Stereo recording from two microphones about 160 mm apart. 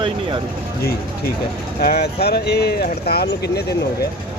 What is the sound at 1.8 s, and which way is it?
Speech, 80° left.